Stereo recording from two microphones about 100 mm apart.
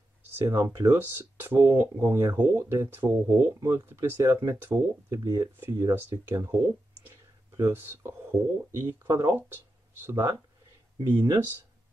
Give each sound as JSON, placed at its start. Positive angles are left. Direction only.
{"t": 0.5, "sound": "speech", "side_deg": -30}
{"t": 0.9, "sound": "speech", "side_deg": -20}
{"t": 7.5, "sound": "speech", "side_deg": -25}
{"t": 11.0, "sound": "speech", "side_deg": -45}